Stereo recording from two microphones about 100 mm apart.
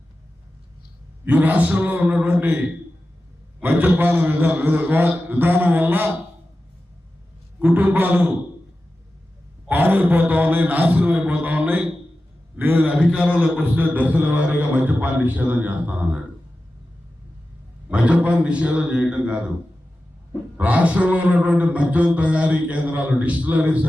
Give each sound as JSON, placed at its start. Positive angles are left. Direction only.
{"t": 1.2, "sound": "a man's voice", "side_deg": -15}
{"t": 7.6, "sound": "a man's voice", "side_deg": -15}
{"t": 9.6, "sound": "a man's voice", "side_deg": -20}
{"t": 17.8, "sound": "a man's voice", "side_deg": -15}
{"t": 20.6, "sound": "a man's voice", "side_deg": -15}